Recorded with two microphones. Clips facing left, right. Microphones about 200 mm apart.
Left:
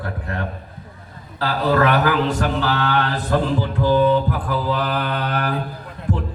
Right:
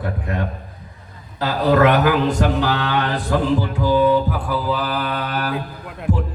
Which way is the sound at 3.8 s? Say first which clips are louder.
Even; 10° right (ahead or behind).